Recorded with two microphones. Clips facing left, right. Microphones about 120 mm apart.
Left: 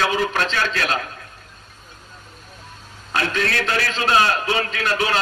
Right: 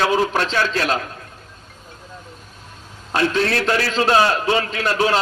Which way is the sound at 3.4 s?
35° right (ahead or behind).